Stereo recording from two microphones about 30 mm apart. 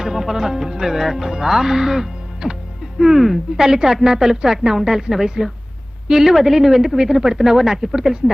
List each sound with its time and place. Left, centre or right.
0.0 s speech: centre
2.4 s speech: right
3.0 s speech: centre